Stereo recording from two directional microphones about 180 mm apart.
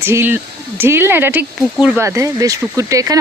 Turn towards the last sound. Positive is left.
turn(degrees=-20)  # may be behind; listen again after turning